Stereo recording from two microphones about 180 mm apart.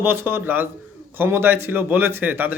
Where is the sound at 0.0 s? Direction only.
10° right (ahead or behind).